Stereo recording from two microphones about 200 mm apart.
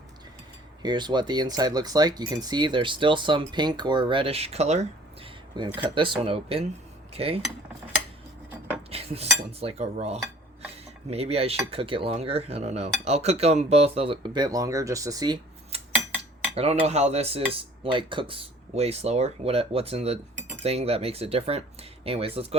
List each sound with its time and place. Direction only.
0.8 s speech: 20° right (ahead or behind)
8.9 s cutlery: 30° right (ahead or behind)
11.1 s speech: 30° right (ahead or behind)
16.6 s cutlery: 30° right (ahead or behind)
17.5 s speech: 25° right (ahead or behind)